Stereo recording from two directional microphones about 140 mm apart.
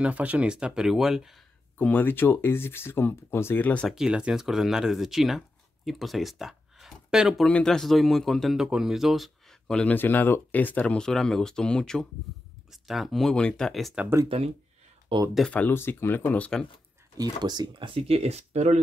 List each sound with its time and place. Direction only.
0.0 s speech: 10° right (ahead or behind)
1.8 s speech: 10° left (ahead or behind)
3.9 s speech: 5° right (ahead or behind)
15.3 s speech: 5° left (ahead or behind)
17.2 s speech: 30° right (ahead or behind); by 18.8 s 50° right (ahead or behind)